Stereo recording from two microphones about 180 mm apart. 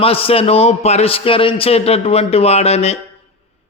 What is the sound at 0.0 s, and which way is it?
Mantra, 30° left (ahead or behind).